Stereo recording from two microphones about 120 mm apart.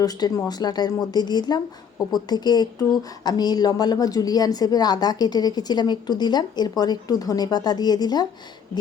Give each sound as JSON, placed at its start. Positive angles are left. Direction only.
{"t": 0.0, "sound": "speech", "side_deg": 30}